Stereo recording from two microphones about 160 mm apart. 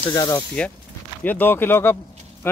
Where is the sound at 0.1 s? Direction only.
20° left (ahead or behind).